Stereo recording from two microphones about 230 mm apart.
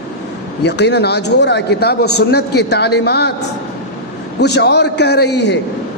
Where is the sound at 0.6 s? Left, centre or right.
Left.